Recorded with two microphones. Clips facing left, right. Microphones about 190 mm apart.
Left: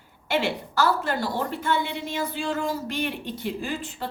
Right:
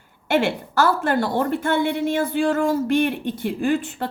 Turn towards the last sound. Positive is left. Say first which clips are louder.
# right 9 dB
turn(degrees=-55)  # may be behind; listen again after turning